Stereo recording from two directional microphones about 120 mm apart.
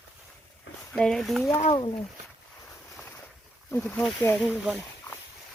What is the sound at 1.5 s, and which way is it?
Speech, 50° left (ahead or behind).